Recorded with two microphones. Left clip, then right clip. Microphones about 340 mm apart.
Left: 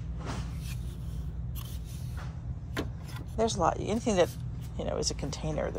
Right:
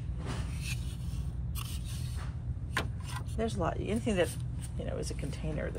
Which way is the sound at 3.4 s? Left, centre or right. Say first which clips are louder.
Left 7 dB; centre.